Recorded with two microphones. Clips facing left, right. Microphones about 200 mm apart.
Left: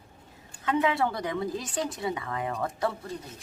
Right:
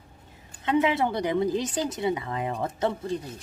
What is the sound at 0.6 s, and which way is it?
Speech, 25° right (ahead or behind).